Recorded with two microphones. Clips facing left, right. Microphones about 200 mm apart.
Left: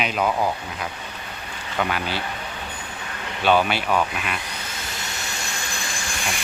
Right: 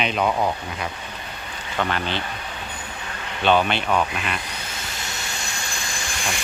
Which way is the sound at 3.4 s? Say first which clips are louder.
Even; 5° left (ahead or behind).